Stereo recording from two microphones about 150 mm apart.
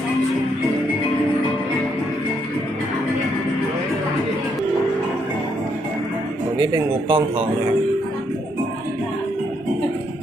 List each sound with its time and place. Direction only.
6.6 s speech: 30° right (ahead or behind)